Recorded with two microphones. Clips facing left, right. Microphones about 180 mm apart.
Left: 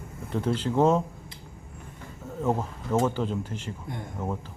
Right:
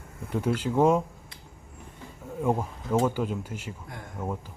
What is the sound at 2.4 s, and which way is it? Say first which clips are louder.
Speech: even; 10° right (ahead or behind).